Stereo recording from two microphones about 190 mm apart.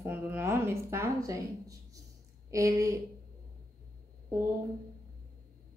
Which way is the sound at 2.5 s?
15° right (ahead or behind).